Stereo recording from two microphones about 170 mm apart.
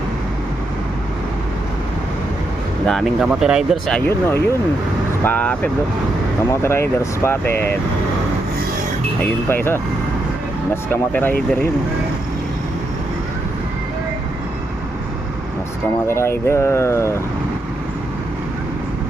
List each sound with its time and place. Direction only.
2.8 s speech: centre (ahead or behind)
4.1 s speech: 15° left (ahead or behind)
9.5 s speech: 15° left (ahead or behind)
10.9 s speech: 10° left (ahead or behind)
16.0 s speech: 15° left (ahead or behind)